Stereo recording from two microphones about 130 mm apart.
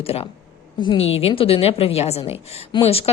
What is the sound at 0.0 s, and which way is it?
A woman's voice, 50° left (ahead or behind).